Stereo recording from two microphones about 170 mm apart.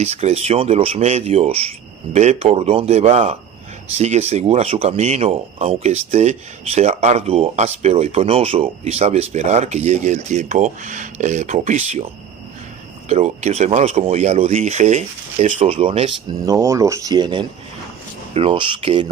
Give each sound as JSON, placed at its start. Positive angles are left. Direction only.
{"t": 0.0, "sound": "speech", "side_deg": -40}
{"t": 13.1, "sound": "speech", "side_deg": -40}
{"t": 16.5, "sound": "speech", "side_deg": -15}